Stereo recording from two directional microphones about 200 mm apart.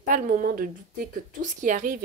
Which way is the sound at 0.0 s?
40° right (ahead or behind).